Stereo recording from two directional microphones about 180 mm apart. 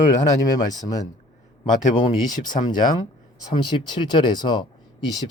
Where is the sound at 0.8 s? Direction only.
20° left (ahead or behind).